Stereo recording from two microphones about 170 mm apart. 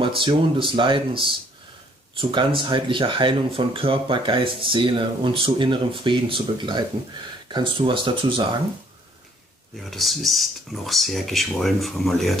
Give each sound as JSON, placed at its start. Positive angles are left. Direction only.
{"t": 0.0, "sound": "speech", "side_deg": -30}
{"t": 9.8, "sound": "speech", "side_deg": 0}